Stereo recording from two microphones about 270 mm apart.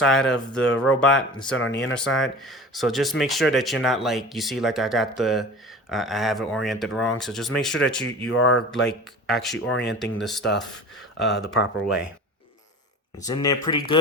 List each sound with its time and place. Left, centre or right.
0.0 s speech: centre
1.5 s speech: left
2.0 s speech: centre
13.2 s speech: centre